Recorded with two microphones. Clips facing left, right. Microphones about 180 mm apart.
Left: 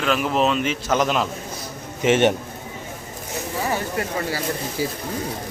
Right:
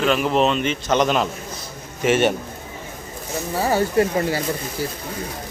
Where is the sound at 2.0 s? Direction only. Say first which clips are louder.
Left 1 dB; 20° left (ahead or behind).